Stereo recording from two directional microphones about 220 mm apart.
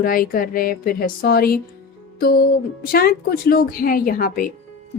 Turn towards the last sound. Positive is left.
turn(degrees=40)  # may be behind; listen again after turning